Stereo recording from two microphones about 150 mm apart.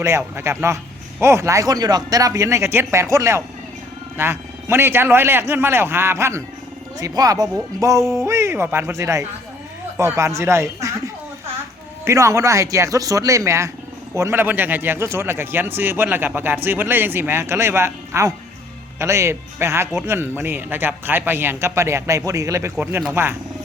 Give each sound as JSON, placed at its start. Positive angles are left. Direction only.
{"t": 0.0, "sound": "speech", "side_deg": -15}